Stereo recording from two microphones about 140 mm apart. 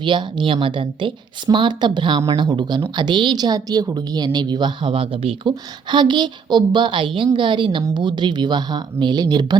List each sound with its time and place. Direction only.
0.0 s a woman's voice: 35° right (ahead or behind)